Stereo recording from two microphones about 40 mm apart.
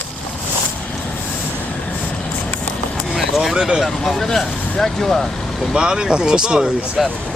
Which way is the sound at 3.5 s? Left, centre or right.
Right.